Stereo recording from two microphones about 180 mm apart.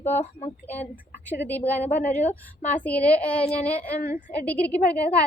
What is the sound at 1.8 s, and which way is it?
Speech, 40° left (ahead or behind).